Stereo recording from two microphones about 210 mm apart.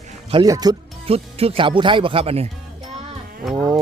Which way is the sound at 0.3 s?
20° right (ahead or behind).